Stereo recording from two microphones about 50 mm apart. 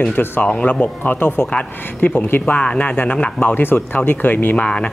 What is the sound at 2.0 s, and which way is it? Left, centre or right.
Speech, left.